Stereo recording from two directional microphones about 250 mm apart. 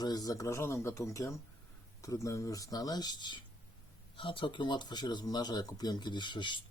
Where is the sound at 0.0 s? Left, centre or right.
Centre.